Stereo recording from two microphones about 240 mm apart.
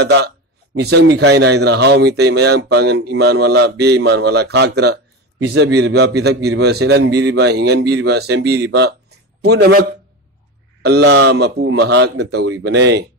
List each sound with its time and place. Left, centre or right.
0.0 s a man's voice: right